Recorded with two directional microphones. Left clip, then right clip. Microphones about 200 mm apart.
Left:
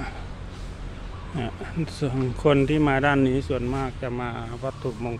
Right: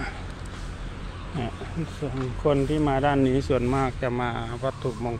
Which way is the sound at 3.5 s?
10° right (ahead or behind).